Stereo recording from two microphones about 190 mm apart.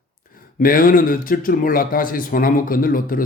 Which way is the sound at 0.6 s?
50° left (ahead or behind).